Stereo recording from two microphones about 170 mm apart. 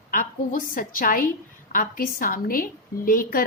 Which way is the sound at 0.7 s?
55° left (ahead or behind).